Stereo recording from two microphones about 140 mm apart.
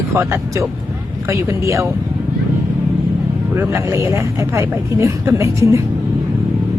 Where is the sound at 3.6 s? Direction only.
20° right (ahead or behind).